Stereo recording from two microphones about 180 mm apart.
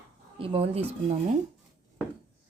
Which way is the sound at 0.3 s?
30° right (ahead or behind).